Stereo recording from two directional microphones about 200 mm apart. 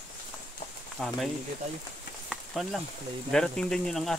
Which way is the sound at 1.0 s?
Centre (ahead or behind).